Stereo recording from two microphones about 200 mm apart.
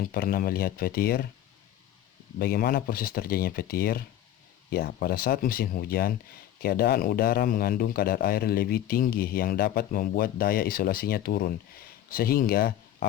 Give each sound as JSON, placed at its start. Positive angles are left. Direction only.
{"t": 0.0, "sound": "speech", "side_deg": 45}
{"t": 2.4, "sound": "speech", "side_deg": 50}